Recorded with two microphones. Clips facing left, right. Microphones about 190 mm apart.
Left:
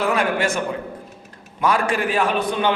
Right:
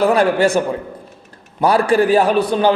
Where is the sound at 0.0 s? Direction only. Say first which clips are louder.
Right 7 dB; 35° right (ahead or behind).